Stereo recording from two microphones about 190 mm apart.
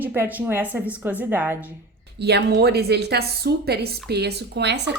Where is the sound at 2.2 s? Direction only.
60° right (ahead or behind).